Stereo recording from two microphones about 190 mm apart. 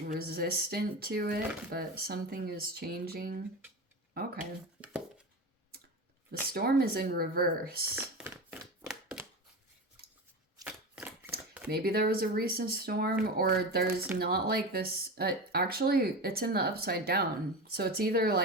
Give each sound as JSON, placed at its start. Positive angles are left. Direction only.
{"t": 0.0, "sound": "speech", "side_deg": -50}
{"t": 4.8, "sound": "a sound", "side_deg": -5}
{"t": 6.5, "sound": "speech", "side_deg": -55}
{"t": 7.9, "sound": "a sound", "side_deg": -10}
{"t": 10.6, "sound": "shuffling cards", "side_deg": -5}
{"t": 11.7, "sound": "speech", "side_deg": -55}